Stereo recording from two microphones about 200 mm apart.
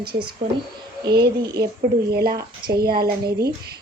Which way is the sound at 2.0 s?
50° right (ahead or behind).